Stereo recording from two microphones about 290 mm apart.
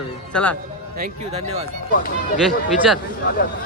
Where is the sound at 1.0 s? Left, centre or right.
Right.